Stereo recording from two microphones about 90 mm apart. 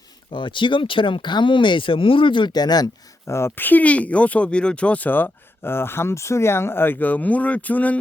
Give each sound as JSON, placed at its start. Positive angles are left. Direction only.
{"t": 0.3, "sound": "speech", "side_deg": 65}
{"t": 3.2, "sound": "speech", "side_deg": 30}